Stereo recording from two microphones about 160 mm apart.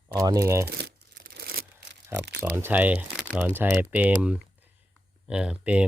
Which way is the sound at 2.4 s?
10° right (ahead or behind).